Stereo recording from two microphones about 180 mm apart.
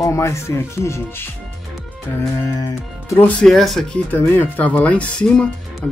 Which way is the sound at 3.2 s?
5° left (ahead or behind).